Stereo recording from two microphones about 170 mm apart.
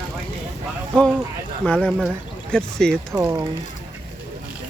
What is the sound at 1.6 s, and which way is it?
Speech, 5° left (ahead or behind).